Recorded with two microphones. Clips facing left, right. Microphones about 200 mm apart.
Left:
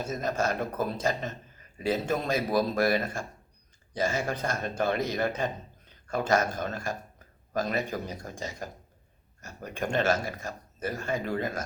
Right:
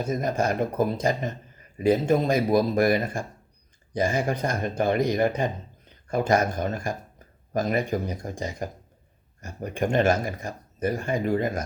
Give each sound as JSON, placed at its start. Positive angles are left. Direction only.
{"t": 0.0, "sound": "a man's voice", "side_deg": -15}